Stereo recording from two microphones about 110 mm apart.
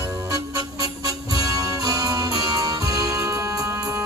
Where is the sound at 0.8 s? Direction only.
30° right (ahead or behind).